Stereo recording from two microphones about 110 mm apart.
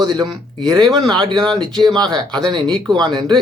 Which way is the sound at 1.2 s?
45° right (ahead or behind).